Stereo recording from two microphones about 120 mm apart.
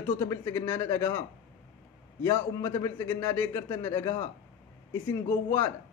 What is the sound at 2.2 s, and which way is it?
A man's voice, 20° left (ahead or behind).